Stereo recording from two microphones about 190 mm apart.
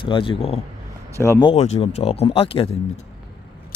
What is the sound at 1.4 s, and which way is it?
Speech, 30° left (ahead or behind).